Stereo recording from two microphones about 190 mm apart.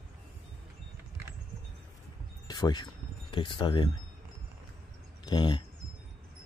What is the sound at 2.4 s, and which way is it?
Speech, 20° left (ahead or behind).